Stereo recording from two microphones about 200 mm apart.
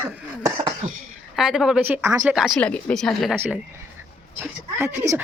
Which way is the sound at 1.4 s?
Centre (ahead or behind).